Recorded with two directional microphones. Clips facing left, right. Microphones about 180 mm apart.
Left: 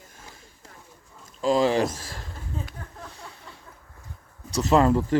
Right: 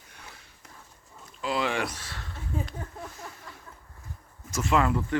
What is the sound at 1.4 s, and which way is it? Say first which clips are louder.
Speech: left 8 dB; 40° left (ahead or behind).